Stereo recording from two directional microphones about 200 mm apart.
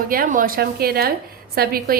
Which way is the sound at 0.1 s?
45° right (ahead or behind).